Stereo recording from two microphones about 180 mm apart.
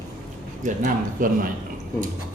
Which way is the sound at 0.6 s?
50° right (ahead or behind).